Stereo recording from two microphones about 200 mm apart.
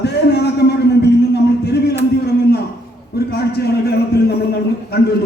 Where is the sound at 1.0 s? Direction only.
55° left (ahead or behind).